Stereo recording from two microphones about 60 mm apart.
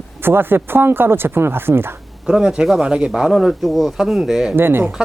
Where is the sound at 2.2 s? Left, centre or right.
Centre.